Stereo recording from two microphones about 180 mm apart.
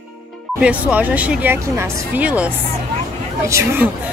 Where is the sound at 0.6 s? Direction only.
5° right (ahead or behind).